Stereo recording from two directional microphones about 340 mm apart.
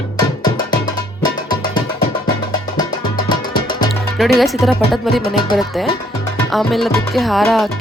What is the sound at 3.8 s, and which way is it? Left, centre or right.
Music, centre.